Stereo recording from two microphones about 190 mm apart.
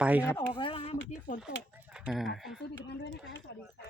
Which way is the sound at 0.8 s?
40° left (ahead or behind).